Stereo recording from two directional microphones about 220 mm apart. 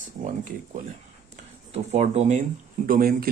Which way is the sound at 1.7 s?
30° right (ahead or behind).